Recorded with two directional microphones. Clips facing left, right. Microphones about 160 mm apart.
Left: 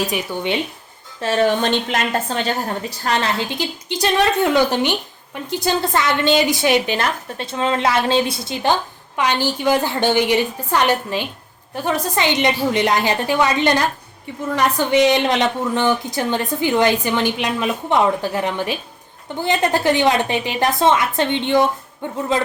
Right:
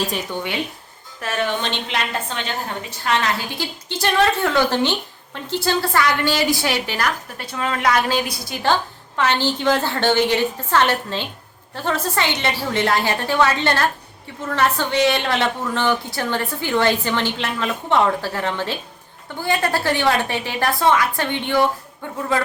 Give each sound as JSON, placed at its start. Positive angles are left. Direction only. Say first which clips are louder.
{"t": 0.1, "sound": "a woman's voice", "louder": "left 4 dB", "side_deg": 20}
{"t": 1.2, "sound": "a woman's voice", "louder": "left 6 dB", "side_deg": 30}
{"t": 3.6, "sound": "a woman's voice", "louder": "left 3 dB", "side_deg": 15}